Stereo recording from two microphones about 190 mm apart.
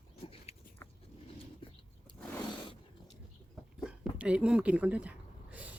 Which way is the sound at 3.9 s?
5° right (ahead or behind).